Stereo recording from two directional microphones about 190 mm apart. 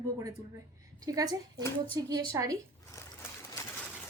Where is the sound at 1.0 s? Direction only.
20° right (ahead or behind).